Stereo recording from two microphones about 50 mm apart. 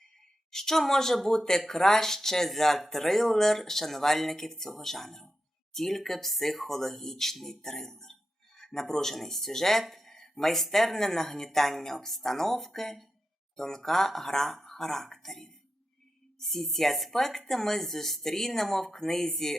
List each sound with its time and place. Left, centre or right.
0.5 s speech: centre